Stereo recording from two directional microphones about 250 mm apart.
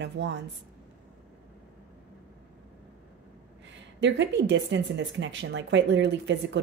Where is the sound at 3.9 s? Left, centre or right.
Right.